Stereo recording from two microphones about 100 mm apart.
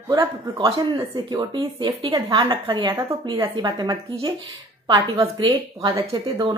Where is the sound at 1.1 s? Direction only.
50° right (ahead or behind).